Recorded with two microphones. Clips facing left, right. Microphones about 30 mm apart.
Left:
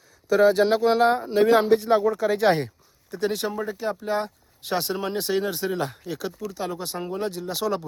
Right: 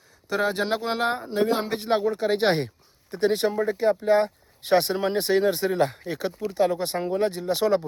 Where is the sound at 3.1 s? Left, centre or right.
Right.